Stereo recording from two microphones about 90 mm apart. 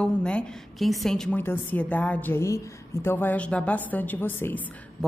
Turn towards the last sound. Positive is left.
turn(degrees=20)  # may be behind; listen again after turning